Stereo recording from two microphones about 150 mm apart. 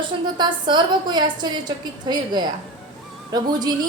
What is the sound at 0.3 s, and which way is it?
A woman's voice, 30° right (ahead or behind).